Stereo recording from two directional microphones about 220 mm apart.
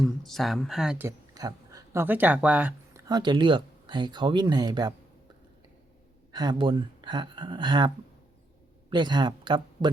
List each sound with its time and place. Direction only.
0.0 s speech: centre (ahead or behind)
3.1 s speech: 20° right (ahead or behind)
6.3 s speech: 20° right (ahead or behind)